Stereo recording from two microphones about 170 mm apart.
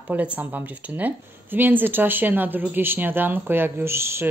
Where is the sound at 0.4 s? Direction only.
10° right (ahead or behind).